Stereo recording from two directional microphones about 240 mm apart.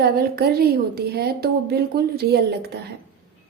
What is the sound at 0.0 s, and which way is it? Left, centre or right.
A woman's voice, right.